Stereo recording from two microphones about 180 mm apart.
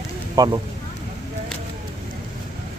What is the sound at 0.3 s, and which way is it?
Speech, 20° right (ahead or behind).